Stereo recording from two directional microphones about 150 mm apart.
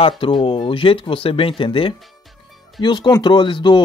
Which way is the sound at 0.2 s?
35° left (ahead or behind).